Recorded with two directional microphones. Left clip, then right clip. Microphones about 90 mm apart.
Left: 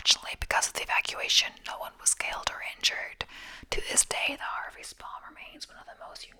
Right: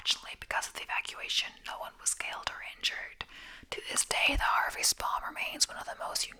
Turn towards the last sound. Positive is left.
turn(degrees=-50)  # may be behind; listen again after turning